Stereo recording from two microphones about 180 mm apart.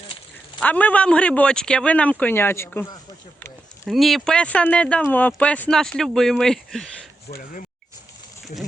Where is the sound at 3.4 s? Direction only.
15° left (ahead or behind).